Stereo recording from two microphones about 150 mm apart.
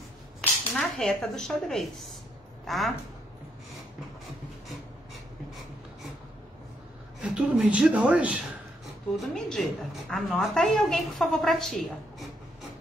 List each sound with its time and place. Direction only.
0.4 s a woman's voice: 5° left (ahead or behind)
7.2 s speech: 5° right (ahead or behind)
9.1 s a woman's voice: centre (ahead or behind)